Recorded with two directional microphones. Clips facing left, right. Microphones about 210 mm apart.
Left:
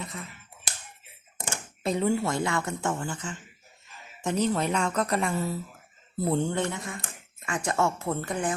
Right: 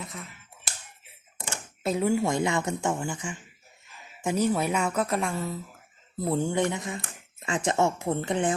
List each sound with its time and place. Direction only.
0.0 s finger snapping: centre (ahead or behind)
1.8 s speech: 5° right (ahead or behind); by 8.5 s 25° right (ahead or behind)